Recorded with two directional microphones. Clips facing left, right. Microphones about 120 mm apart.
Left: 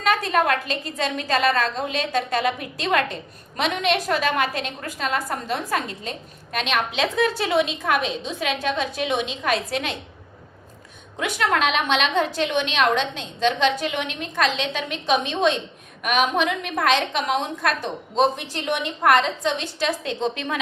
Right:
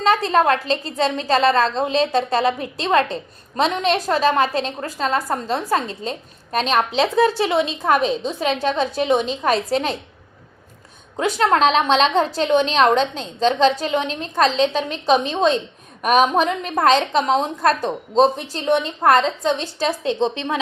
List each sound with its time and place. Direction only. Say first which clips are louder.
0.0 s a woman's voice: right 4 dB; 30° right (ahead or behind)
11.2 s a woman's voice: right 5 dB; 35° right (ahead or behind)